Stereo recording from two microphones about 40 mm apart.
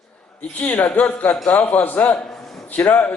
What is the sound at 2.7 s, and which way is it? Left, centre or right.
Speech, left.